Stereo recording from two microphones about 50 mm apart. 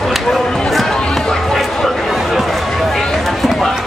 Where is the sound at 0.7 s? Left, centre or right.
Centre.